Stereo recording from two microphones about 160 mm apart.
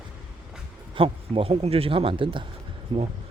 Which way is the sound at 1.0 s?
35° right (ahead or behind).